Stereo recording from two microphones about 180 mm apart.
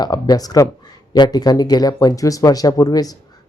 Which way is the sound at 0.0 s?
20° left (ahead or behind).